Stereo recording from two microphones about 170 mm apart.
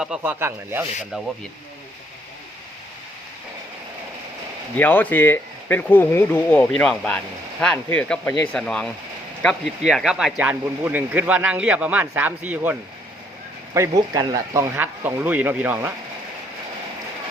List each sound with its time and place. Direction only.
0.0 s speech: 10° right (ahead or behind)
4.8 s speech: 10° left (ahead or behind); by 12.7 s 10° right (ahead or behind)
13.7 s speech: 20° right (ahead or behind)